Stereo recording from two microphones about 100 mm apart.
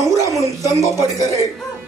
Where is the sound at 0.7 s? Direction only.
30° right (ahead or behind).